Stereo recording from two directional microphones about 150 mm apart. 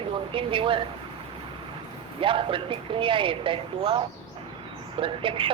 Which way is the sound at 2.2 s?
35° right (ahead or behind).